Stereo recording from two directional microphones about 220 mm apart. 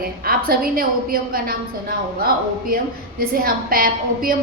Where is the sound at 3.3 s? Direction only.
40° right (ahead or behind).